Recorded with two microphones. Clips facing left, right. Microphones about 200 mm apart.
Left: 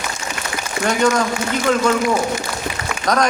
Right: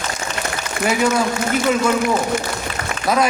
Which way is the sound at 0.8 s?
5° right (ahead or behind).